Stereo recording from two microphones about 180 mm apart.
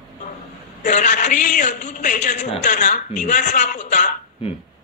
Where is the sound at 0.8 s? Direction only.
45° left (ahead or behind).